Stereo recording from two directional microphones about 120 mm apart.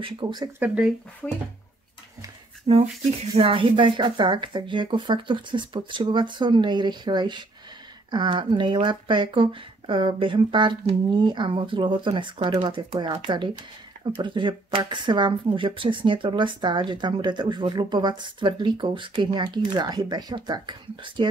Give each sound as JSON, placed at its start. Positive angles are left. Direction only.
{"t": 0.0, "sound": "speech", "side_deg": -40}
{"t": 0.6, "sound": "speech", "side_deg": -10}
{"t": 2.7, "sound": "speech", "side_deg": -65}
{"t": 3.4, "sound": "speech", "side_deg": -45}